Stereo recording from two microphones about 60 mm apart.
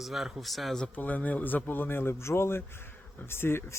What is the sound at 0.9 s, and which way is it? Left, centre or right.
Speech, left.